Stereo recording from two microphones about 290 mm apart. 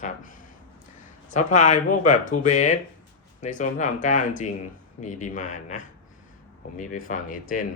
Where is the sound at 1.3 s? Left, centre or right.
Left.